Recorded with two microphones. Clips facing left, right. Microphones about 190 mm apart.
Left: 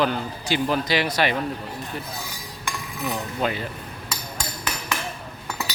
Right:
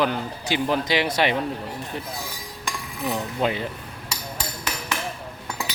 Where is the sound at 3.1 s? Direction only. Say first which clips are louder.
Right 2 dB; 20° right (ahead or behind).